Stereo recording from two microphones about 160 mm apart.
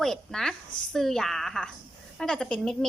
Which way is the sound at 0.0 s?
Centre (ahead or behind).